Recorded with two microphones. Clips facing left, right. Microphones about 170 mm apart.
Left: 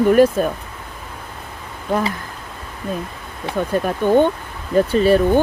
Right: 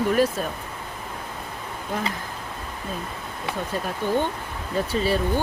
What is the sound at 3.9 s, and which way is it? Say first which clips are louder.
Speech: left 10 dB; 55° left (ahead or behind).